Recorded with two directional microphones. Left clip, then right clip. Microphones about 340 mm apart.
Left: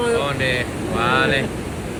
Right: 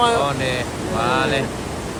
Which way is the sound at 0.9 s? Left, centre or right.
Centre.